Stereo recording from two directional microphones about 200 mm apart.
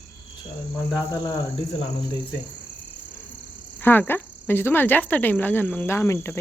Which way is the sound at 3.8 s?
10° left (ahead or behind).